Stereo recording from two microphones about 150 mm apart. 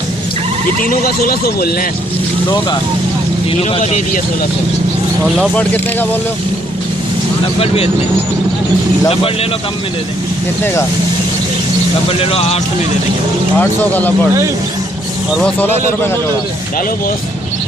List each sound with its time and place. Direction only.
0.9 s speech: 85° left
3.6 s speech: 45° left (ahead or behind)
5.5 s speech: 10° left (ahead or behind)
9.0 s speech: 40° left (ahead or behind)
10.6 s speech: 15° left (ahead or behind)
12.0 s speech: 40° left (ahead or behind)
13.6 s speech: 10° left (ahead or behind)
15.3 s speech: 5° left (ahead or behind)